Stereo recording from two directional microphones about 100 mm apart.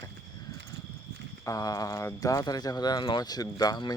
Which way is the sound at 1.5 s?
35° left (ahead or behind).